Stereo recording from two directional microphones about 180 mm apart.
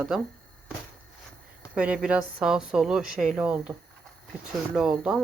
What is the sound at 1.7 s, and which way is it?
Speech, 5° right (ahead or behind).